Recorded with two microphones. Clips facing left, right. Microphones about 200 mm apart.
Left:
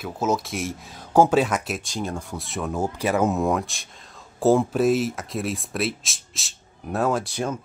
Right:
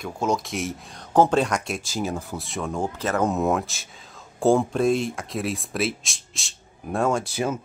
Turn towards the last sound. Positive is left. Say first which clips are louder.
# right 1 dB
turn(degrees=-5)  # may be behind; listen again after turning